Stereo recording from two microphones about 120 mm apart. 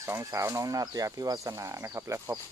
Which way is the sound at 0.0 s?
20° right (ahead or behind).